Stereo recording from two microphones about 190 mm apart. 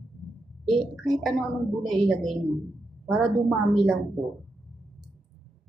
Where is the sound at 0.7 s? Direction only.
20° right (ahead or behind).